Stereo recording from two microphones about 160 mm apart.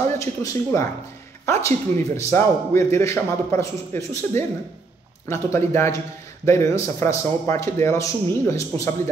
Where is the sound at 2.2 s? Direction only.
15° left (ahead or behind).